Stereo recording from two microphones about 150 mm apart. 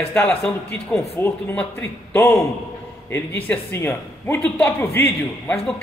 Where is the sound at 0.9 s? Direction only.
15° left (ahead or behind).